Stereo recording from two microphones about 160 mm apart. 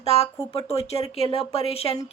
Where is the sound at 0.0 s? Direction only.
40° left (ahead or behind).